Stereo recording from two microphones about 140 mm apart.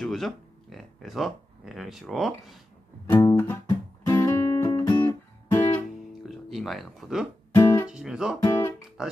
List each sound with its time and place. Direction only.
0.0 s speech: 5° left (ahead or behind)
3.1 s music: 20° left (ahead or behind)
6.2 s speech: centre (ahead or behind)
7.5 s guitar: 20° left (ahead or behind)
7.9 s speech: 5° right (ahead or behind)
8.5 s guitar: 20° left (ahead or behind)
9.0 s speech: 5° right (ahead or behind)